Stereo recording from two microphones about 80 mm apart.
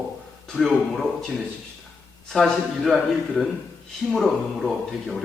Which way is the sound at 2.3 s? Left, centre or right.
Centre.